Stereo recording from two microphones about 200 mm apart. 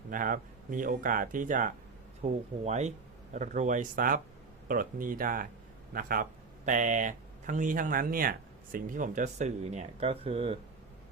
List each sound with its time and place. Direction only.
0.1 s speech: 40° right (ahead or behind)